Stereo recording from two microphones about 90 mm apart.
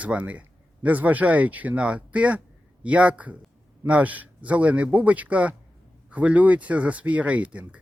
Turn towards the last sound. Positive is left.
turn(degrees=-15)  # may be behind; listen again after turning